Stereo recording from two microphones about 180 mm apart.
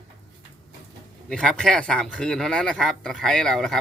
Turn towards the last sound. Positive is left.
turn(degrees=0)  # may be behind; listen again after turning